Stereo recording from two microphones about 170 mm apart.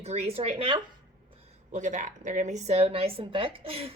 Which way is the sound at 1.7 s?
45° right (ahead or behind).